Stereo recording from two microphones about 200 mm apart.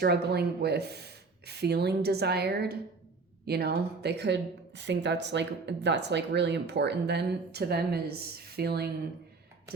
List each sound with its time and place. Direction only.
0.0 s speech: 55° right (ahead or behind)